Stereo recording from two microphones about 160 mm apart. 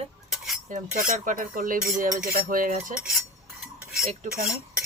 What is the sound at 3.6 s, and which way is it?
Cutlery, 5° right (ahead or behind).